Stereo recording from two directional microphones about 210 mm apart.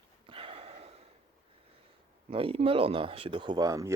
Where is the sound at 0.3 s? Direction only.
25° right (ahead or behind).